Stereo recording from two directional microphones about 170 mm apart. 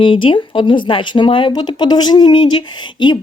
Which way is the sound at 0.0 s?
30° left (ahead or behind).